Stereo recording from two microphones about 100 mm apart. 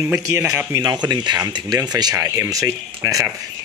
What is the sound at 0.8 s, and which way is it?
Speech, 45° right (ahead or behind).